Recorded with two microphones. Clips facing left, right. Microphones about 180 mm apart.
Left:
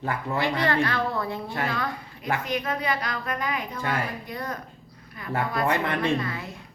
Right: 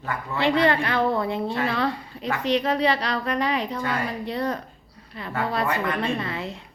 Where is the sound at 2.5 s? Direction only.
30° right (ahead or behind).